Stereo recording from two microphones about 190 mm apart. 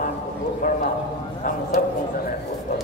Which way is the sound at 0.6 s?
45° left (ahead or behind).